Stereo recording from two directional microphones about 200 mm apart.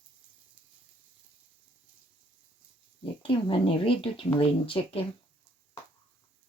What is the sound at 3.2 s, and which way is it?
Speech, 25° left (ahead or behind).